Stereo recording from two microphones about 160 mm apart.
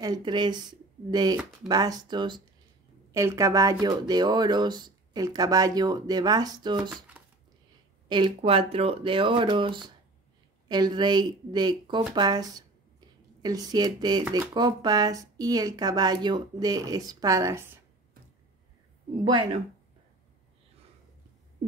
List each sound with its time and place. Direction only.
0.0 s speech: 25° right (ahead or behind)
6.9 s speech: 10° right (ahead or behind)
8.4 s speech: 35° right (ahead or behind); by 17.6 s 20° right (ahead or behind)
19.2 s speech: 30° right (ahead or behind)